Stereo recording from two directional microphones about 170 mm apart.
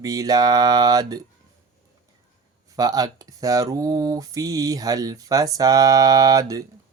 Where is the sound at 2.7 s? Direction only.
20° right (ahead or behind).